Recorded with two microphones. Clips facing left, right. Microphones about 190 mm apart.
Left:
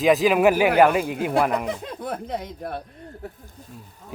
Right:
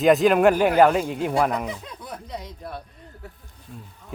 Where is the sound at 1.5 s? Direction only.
60° left (ahead or behind).